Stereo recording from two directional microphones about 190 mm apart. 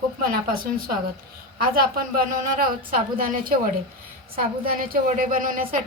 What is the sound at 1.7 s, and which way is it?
A woman's voice, 50° right (ahead or behind).